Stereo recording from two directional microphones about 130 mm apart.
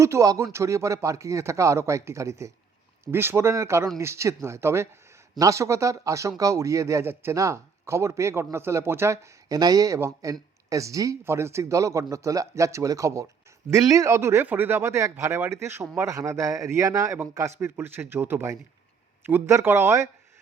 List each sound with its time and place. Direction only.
0.0 s speech: 25° right (ahead or behind)